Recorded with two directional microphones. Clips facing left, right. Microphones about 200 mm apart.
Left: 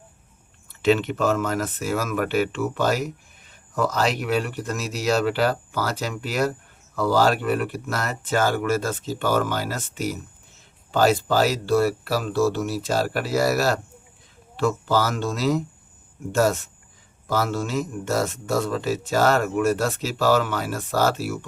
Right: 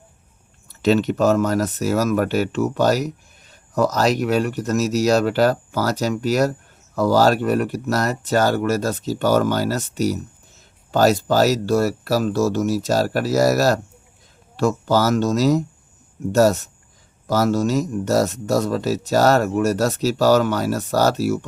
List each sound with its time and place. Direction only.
0.7 s a man's voice: 40° right (ahead or behind)